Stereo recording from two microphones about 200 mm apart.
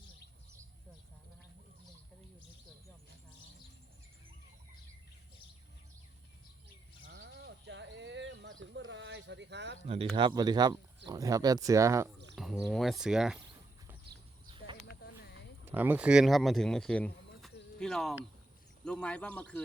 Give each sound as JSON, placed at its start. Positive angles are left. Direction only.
{"t": 7.0, "sound": "a sound", "side_deg": -70}
{"t": 9.8, "sound": "speech", "side_deg": -30}
{"t": 12.4, "sound": "speech", "side_deg": 0}
{"t": 15.6, "sound": "speech", "side_deg": -10}